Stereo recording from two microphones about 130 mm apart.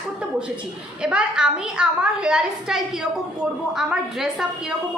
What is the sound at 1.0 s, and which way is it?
A woman's voice, 5° right (ahead or behind).